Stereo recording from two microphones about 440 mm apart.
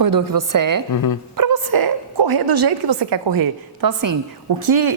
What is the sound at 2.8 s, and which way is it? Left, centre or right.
Speech, right.